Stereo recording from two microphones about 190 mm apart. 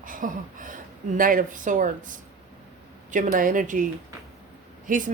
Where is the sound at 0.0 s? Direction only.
45° right (ahead or behind).